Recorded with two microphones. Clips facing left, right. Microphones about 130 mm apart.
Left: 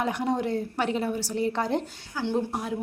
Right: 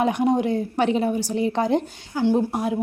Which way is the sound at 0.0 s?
15° right (ahead or behind).